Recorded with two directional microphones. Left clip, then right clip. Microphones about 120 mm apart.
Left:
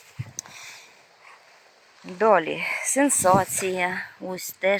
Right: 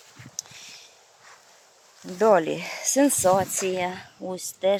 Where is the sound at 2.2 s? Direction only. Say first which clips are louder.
Even; 30° right (ahead or behind).